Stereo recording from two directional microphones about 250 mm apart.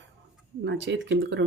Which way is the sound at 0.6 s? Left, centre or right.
Right.